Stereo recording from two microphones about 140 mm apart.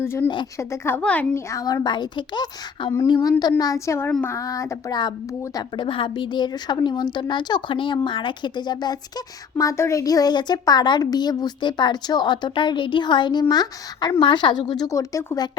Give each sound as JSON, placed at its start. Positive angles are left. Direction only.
{"t": 0.0, "sound": "a woman's voice", "side_deg": 15}
{"t": 1.5, "sound": "a woman's voice", "side_deg": 25}